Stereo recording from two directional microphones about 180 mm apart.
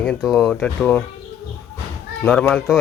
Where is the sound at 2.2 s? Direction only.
5° left (ahead or behind).